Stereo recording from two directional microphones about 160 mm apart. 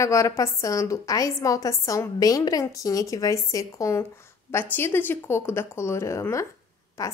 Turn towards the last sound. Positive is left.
turn(degrees=20)  # may be behind; listen again after turning